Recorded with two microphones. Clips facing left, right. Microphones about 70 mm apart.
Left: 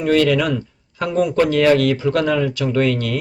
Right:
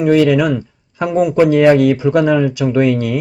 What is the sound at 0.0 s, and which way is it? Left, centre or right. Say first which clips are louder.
Speech: right 4 dB; centre.